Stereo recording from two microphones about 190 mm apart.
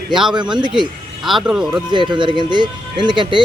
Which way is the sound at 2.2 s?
25° right (ahead or behind).